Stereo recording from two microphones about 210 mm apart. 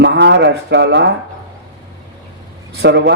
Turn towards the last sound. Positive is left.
turn(degrees=-55)  # may be behind; listen again after turning